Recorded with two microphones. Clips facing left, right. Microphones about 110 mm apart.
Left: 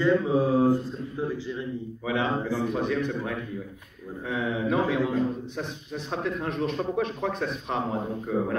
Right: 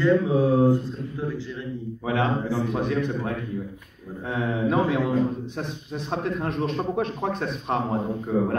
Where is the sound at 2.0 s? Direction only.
45° right (ahead or behind).